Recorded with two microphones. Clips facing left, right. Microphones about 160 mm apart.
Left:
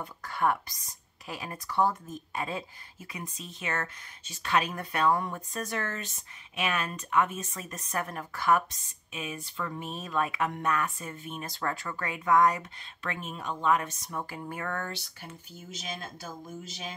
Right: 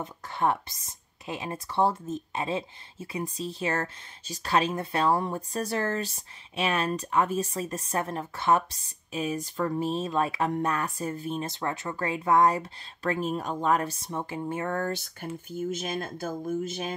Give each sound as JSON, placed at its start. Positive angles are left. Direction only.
{"t": 0.0, "sound": "speech", "side_deg": -25}
{"t": 15.2, "sound": "speech", "side_deg": -50}